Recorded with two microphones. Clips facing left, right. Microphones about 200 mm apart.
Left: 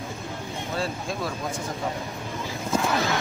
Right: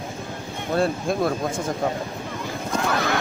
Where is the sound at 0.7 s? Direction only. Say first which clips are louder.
Right 9 dB; 55° right (ahead or behind).